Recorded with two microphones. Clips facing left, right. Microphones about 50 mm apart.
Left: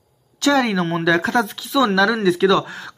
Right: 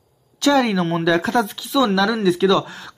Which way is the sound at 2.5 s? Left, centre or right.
Left.